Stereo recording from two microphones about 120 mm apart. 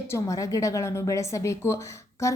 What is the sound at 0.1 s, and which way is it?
Speech, 25° left (ahead or behind).